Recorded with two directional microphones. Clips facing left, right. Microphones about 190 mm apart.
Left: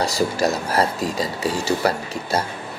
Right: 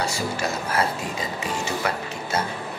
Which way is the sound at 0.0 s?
40° left (ahead or behind).